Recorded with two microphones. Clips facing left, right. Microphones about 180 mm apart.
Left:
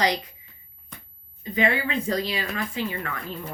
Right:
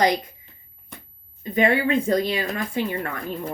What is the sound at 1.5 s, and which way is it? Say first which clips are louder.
Speech: right 5 dB; 45° right (ahead or behind).